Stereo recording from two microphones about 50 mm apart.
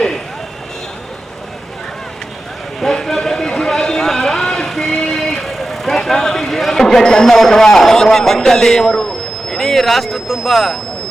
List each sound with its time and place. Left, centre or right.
2.8 s a sound: centre
4.9 s vehicle: centre
5.2 s speech: centre